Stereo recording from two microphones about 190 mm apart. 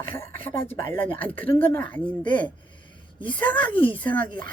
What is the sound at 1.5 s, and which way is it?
Speech, 10° left (ahead or behind).